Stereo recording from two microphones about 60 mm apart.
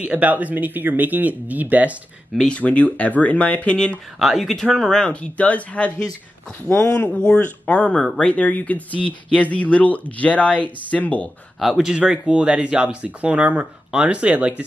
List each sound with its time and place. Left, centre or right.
0.0 s speech: right
2.4 s speech: left
4.2 s speech: centre; by 5.9 s left
7.0 s speech: left
11.6 s speech: centre